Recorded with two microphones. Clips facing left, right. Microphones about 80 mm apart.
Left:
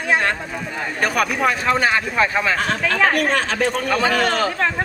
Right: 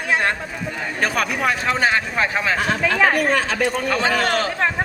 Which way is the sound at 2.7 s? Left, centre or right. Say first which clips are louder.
Right 2 dB; centre.